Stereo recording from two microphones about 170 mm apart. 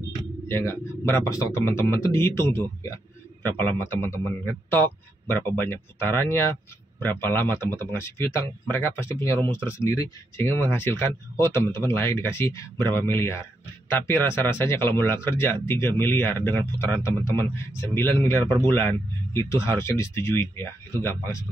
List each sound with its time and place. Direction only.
0.5 s speech: 15° left (ahead or behind)